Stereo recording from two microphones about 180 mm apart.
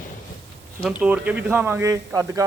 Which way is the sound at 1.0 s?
5° right (ahead or behind).